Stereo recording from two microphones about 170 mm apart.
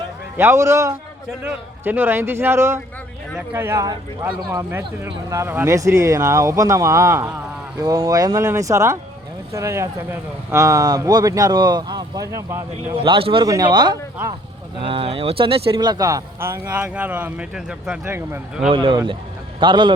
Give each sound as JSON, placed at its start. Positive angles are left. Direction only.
{"t": 0.3, "sound": "speech", "side_deg": -15}
{"t": 13.0, "sound": "a man's voice", "side_deg": -30}
{"t": 18.0, "sound": "speech", "side_deg": -15}
{"t": 18.7, "sound": "a man's voice", "side_deg": -30}